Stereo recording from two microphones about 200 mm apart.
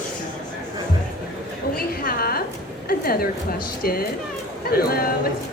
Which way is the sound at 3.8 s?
50° left (ahead or behind).